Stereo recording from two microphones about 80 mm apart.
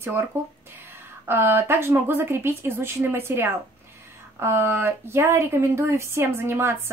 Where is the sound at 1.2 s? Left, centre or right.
Right.